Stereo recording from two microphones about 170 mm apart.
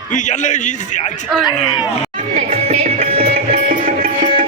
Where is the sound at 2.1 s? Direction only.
35° right (ahead or behind).